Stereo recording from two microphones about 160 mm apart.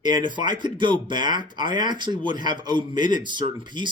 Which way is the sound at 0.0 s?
30° right (ahead or behind).